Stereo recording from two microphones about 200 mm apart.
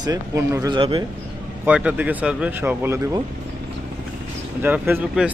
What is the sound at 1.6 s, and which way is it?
Speech, 5° right (ahead or behind).